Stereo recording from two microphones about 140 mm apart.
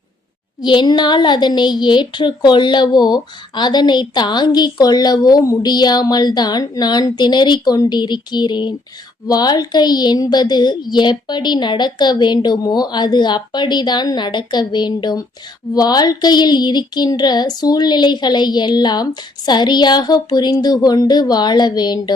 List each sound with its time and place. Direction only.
0.6 s a woman's voice: 35° left (ahead or behind)